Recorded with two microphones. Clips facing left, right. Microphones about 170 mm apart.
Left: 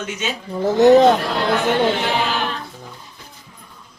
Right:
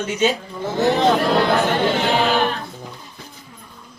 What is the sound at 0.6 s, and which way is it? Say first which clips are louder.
Speech: left 8 dB; 40° left (ahead or behind).